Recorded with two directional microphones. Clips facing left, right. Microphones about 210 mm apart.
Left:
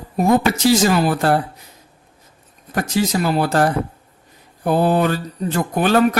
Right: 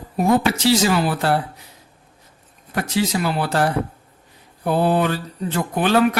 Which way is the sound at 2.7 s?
45° left (ahead or behind).